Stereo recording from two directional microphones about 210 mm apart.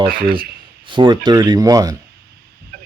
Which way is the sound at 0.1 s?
45° right (ahead or behind).